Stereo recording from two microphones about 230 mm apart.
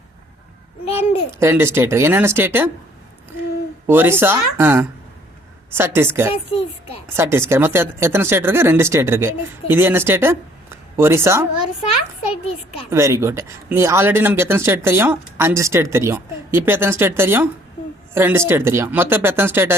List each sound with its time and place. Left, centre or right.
0.9 s a child's voice: left
1.4 s speech: centre
3.8 s speech: centre
12.9 s speech: centre